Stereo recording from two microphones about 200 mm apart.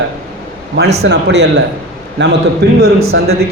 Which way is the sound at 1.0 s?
60° right (ahead or behind).